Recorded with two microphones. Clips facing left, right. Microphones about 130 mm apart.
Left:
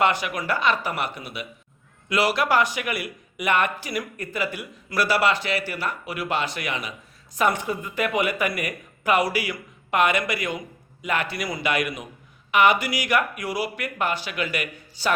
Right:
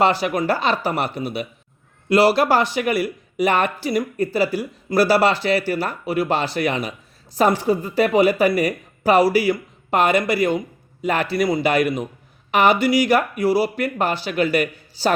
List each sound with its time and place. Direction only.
0.0 s speech: 35° right (ahead or behind)